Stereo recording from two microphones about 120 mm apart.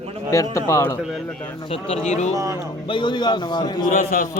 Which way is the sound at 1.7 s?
55° left (ahead or behind).